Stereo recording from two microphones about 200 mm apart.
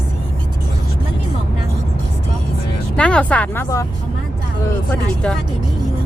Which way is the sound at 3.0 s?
5° left (ahead or behind).